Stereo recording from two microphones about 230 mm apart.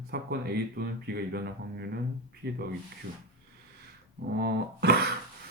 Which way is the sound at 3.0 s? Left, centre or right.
Right.